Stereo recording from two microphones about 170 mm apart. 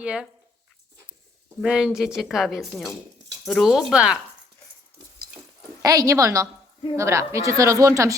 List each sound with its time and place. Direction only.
0.0 s speech: 5° right (ahead or behind)
1.6 s speech: 5° right (ahead or behind)
5.8 s a woman's voice: 20° right (ahead or behind)